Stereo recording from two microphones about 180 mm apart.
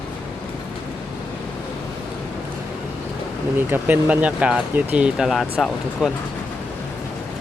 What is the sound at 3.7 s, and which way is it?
Speech, 10° right (ahead or behind).